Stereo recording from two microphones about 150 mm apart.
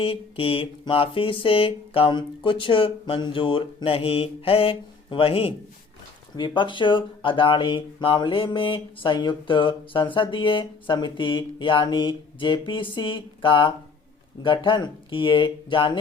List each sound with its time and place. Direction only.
0.0 s speech: 40° left (ahead or behind)